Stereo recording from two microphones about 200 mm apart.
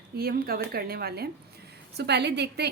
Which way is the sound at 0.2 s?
50° right (ahead or behind).